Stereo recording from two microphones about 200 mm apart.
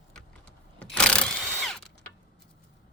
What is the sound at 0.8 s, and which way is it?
Power tool, 5° left (ahead or behind).